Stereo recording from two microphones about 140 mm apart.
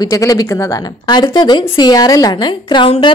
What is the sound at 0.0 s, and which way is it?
A woman's voice, 25° left (ahead or behind).